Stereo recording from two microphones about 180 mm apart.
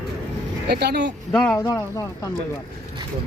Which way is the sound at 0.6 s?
60° right (ahead or behind).